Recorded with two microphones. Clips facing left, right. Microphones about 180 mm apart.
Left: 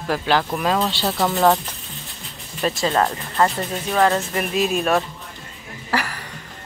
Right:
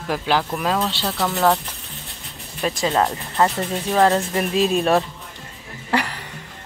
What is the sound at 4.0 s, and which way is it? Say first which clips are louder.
Speech: right 1 dB; 25° right (ahead or behind).